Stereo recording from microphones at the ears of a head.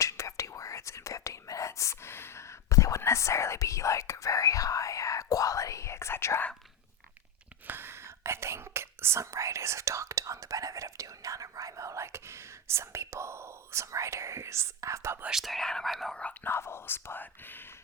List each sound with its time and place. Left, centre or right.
0.0 s whispering: left
7.7 s whispering: right
15.4 s speech: centre
16.6 s speech: left